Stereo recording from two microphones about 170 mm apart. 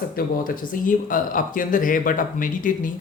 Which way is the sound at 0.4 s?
55° left (ahead or behind).